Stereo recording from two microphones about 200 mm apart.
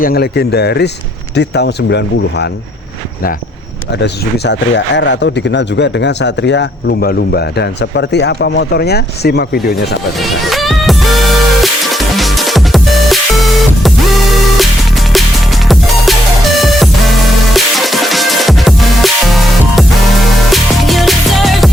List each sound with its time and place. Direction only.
0.0 s speech: 50° left (ahead or behind)
3.9 s speech: 60° left (ahead or behind)
10.2 s music: centre (ahead or behind)